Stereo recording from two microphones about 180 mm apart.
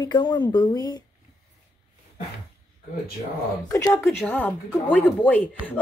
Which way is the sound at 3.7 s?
15° left (ahead or behind).